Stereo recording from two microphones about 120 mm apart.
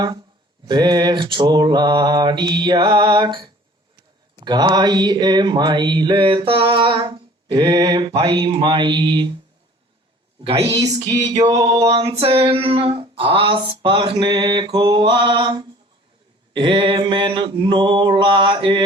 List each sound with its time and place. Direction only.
0.7 s mantra: 35° right (ahead or behind)
10.6 s mantra: 30° right (ahead or behind)
11.9 s a sound: 50° right (ahead or behind)
16.5 s mantra: 40° right (ahead or behind)